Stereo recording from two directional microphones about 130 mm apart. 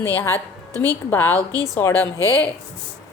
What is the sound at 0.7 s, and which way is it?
Speech, 25° right (ahead or behind).